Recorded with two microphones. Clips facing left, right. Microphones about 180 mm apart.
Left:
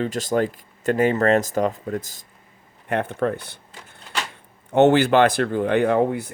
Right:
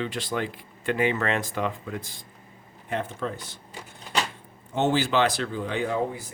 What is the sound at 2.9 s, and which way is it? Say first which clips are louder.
Speech: left 7 dB; 60° left (ahead or behind).